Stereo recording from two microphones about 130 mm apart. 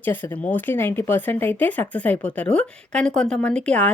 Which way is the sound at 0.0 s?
15° left (ahead or behind).